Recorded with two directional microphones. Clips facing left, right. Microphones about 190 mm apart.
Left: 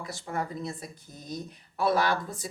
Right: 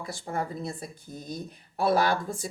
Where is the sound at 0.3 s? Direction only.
30° right (ahead or behind).